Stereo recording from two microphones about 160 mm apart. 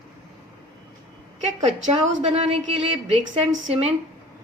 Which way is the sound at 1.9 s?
40° right (ahead or behind).